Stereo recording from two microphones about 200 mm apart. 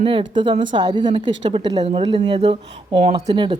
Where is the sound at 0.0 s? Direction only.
25° right (ahead or behind).